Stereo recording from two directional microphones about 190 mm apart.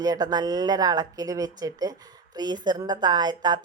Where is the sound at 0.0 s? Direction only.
20° right (ahead or behind).